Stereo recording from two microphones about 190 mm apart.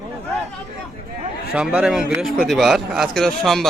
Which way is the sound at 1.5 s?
5° right (ahead or behind).